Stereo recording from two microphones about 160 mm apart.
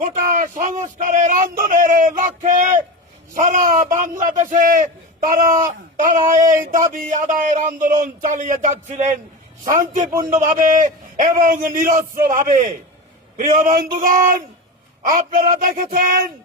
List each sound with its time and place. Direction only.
0.0 s a man's voice: 50° right (ahead or behind)
10.2 s a man's voice: 55° right (ahead or behind)
13.3 s a man's voice: 55° right (ahead or behind)